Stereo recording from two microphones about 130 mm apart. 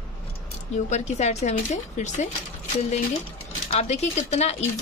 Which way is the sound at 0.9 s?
60° left (ahead or behind).